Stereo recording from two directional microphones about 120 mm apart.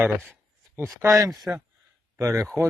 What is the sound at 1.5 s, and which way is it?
Speech, 10° right (ahead or behind).